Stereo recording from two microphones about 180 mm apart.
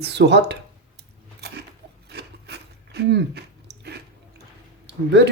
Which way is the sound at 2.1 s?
65° right (ahead or behind).